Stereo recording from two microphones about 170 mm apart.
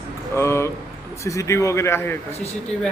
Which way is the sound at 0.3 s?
15° left (ahead or behind).